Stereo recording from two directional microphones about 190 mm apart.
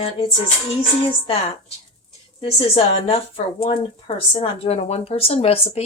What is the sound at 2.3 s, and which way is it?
Speech, 30° left (ahead or behind).